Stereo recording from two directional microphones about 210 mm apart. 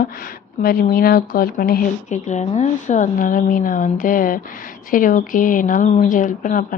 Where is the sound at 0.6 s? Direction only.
45° left (ahead or behind).